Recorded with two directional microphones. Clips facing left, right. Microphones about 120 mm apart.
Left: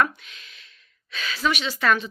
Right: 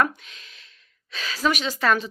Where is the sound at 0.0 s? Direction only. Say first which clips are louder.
Even; 35° right (ahead or behind).